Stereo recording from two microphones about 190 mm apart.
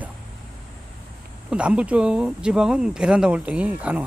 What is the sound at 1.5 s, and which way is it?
Speech, 5° right (ahead or behind).